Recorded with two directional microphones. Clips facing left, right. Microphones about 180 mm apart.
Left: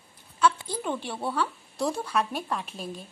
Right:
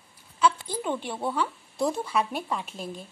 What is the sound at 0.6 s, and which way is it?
Speech, 20° right (ahead or behind).